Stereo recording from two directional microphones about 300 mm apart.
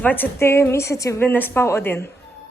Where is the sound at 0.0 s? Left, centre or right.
Centre.